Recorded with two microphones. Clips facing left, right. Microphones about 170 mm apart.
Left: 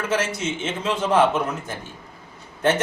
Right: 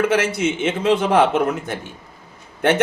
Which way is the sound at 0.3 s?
65° right (ahead or behind).